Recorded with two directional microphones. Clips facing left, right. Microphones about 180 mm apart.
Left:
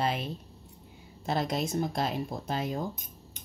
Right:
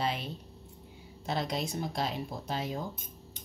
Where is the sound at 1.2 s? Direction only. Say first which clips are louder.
Left 3 dB; 50° left (ahead or behind).